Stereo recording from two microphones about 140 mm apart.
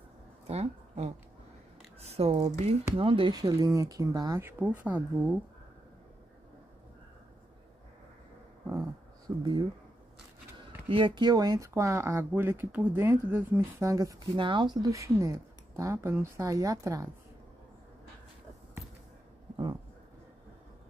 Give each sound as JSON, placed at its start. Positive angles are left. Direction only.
{"t": 0.5, "sound": "speech", "side_deg": -50}
{"t": 2.0, "sound": "a sound", "side_deg": -45}
{"t": 2.6, "sound": "speech", "side_deg": -45}
{"t": 4.5, "sound": "speech", "side_deg": -10}
{"t": 9.4, "sound": "speech", "side_deg": -35}
{"t": 10.9, "sound": "speech", "side_deg": -35}
{"t": 14.3, "sound": "speech", "side_deg": -35}